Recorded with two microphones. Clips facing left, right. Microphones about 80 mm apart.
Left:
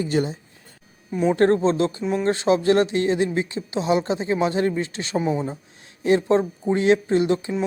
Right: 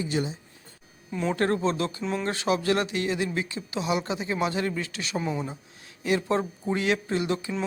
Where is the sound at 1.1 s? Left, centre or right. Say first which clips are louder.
Left 7 dB; centre.